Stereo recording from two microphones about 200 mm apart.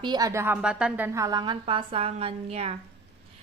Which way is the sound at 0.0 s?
20° right (ahead or behind).